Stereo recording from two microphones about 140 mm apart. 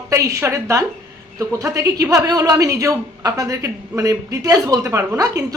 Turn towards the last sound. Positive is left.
turn(degrees=-20)  # may be behind; listen again after turning